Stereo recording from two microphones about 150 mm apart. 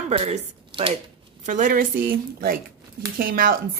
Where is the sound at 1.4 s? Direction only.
60° right (ahead or behind).